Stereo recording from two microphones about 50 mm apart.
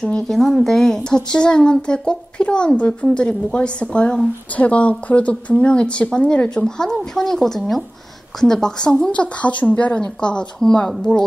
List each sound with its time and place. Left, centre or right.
0.0 s speech: centre
0.4 s speech: centre